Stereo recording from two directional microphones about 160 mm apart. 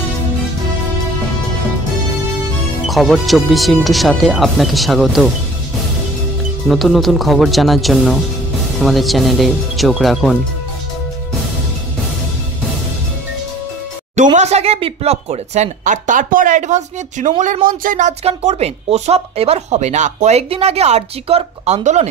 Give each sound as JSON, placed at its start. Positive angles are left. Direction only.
{"t": 2.9, "sound": "speech", "side_deg": 0}
{"t": 6.7, "sound": "speech", "side_deg": 0}
{"t": 14.1, "sound": "speech", "side_deg": -50}